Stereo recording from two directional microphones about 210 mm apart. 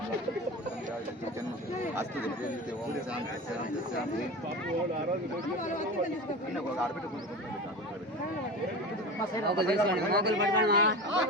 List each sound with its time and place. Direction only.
9.5 s a man's voice: 50° right (ahead or behind)